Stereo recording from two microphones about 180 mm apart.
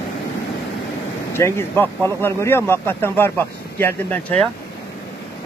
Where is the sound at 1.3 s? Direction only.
15° left (ahead or behind).